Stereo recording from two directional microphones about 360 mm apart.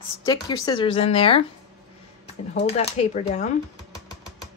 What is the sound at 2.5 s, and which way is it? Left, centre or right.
Speech, centre.